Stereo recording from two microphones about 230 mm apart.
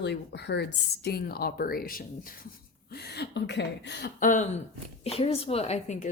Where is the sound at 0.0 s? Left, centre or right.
Left.